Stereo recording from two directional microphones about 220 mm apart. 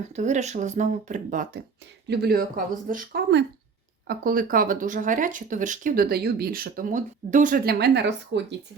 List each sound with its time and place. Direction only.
0.1 s speech: 30° right (ahead or behind); by 8.5 s 50° right (ahead or behind)